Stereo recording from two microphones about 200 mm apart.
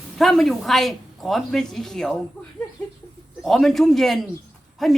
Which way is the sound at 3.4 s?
Centre (ahead or behind).